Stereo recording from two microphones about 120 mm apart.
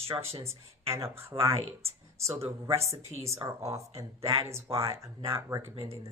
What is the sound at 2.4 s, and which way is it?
Speech, 55° right (ahead or behind).